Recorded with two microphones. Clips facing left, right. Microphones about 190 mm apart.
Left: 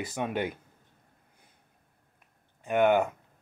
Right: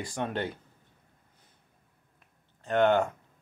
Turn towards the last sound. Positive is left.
turn(degrees=10)  # may be behind; listen again after turning